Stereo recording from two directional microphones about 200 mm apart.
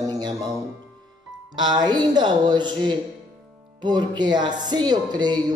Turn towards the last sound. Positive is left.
turn(degrees=-20)  # may be behind; listen again after turning